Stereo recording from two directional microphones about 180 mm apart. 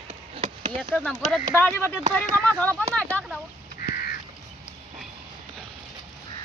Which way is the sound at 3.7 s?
55° left (ahead or behind).